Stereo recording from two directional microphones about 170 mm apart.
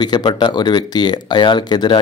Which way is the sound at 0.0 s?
25° left (ahead or behind).